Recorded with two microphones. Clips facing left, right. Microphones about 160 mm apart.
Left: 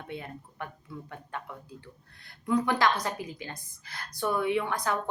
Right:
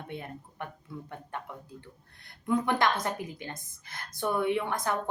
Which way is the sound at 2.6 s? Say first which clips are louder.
Even; 55° right (ahead or behind).